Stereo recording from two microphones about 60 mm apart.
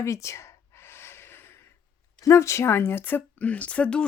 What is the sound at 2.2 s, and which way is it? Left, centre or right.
Speech, left.